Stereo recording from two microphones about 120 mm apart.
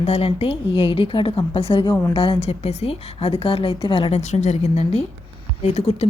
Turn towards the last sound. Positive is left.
turn(degrees=60)  # may be behind; listen again after turning